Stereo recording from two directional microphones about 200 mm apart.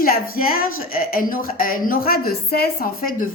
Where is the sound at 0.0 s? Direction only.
45° left (ahead or behind).